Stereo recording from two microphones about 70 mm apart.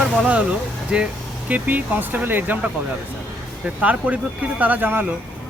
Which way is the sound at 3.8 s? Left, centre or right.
Right.